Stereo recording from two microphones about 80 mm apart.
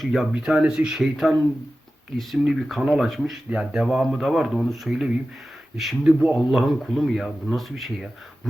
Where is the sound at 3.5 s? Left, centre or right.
Centre.